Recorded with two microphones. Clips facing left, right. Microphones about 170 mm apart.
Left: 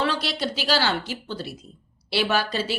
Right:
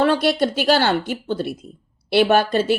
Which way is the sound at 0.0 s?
50° right (ahead or behind).